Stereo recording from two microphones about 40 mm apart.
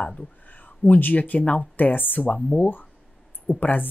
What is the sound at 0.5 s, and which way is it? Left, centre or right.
Speech, left.